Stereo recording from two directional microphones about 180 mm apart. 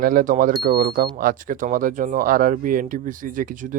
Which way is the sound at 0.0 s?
50° right (ahead or behind).